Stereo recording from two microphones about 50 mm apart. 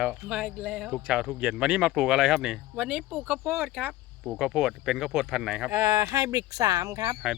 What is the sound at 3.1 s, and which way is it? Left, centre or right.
Speech, centre.